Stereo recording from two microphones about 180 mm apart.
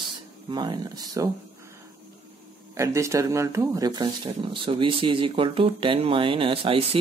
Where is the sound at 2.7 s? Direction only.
15° right (ahead or behind).